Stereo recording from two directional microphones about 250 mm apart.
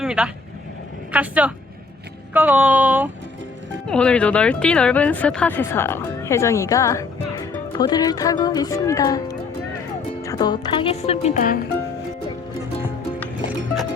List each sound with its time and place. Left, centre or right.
0.0 s vehicle: centre
1.1 s speech: centre
2.3 s a sound: centre
3.8 s speech: centre; by 11.6 s left